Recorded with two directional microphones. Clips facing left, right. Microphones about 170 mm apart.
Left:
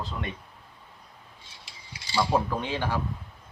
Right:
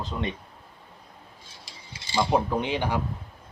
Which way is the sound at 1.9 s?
20° right (ahead or behind).